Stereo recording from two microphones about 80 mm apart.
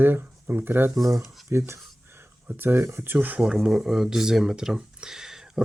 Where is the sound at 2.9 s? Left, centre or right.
Right.